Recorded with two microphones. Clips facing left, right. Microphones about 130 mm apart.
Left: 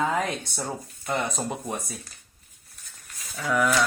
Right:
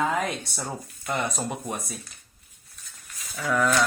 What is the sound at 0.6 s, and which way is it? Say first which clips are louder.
Speech: left 1 dB; 30° left (ahead or behind).